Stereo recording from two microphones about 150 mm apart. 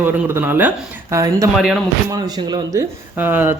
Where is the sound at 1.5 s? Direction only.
Centre (ahead or behind).